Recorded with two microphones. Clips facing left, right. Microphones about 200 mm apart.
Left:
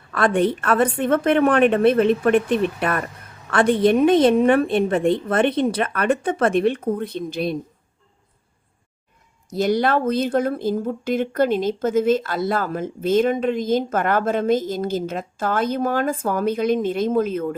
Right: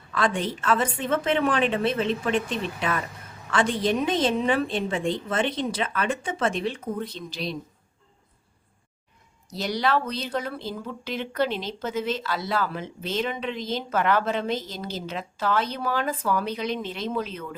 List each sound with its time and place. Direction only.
0.1 s a woman's voice: 60° left (ahead or behind)
9.5 s speech: 50° left (ahead or behind)